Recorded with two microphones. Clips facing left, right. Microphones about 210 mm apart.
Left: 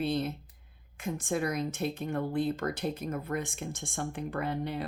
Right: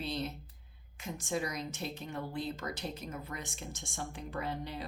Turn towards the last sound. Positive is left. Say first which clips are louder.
# left 6 dB
turn(degrees=55)  # may be behind; listen again after turning